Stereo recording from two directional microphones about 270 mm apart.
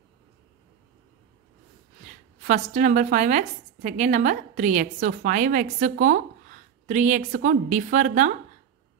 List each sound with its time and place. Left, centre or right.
2.4 s a woman's voice: right